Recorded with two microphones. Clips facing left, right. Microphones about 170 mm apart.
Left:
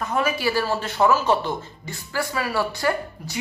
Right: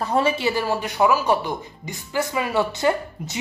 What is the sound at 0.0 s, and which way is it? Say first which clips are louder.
Speech: right 3 dB; 30° right (ahead or behind).